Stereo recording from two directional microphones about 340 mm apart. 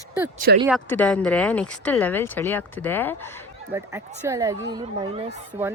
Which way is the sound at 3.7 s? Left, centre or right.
Centre.